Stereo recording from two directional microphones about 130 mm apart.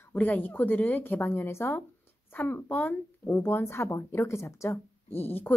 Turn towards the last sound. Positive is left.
turn(degrees=15)  # may be behind; listen again after turning